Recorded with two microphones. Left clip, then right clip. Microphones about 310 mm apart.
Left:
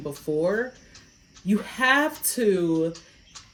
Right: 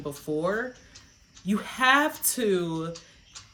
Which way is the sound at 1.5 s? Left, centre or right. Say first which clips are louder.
Even; centre.